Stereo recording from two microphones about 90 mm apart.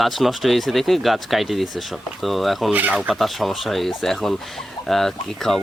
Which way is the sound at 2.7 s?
15° right (ahead or behind).